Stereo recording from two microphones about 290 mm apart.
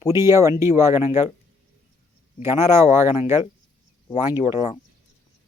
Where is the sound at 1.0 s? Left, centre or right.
Left.